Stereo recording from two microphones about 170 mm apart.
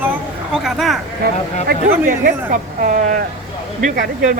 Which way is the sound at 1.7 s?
55° right (ahead or behind).